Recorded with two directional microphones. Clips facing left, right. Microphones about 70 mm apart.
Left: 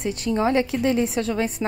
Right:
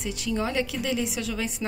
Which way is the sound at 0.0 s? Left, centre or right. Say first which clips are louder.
Left 6 dB; left.